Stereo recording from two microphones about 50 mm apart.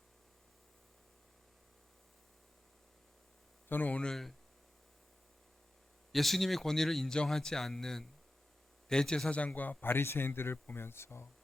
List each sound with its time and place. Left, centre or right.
3.7 s speech: left
4.1 s speech: centre
6.1 s speech: centre
9.6 s speech: left